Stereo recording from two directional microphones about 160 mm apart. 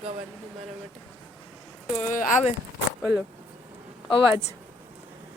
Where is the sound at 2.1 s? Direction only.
55° left (ahead or behind).